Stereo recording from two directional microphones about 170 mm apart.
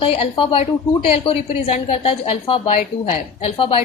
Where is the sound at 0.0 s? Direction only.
35° left (ahead or behind).